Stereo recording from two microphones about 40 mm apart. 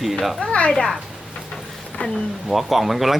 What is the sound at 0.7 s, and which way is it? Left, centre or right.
Speech, centre.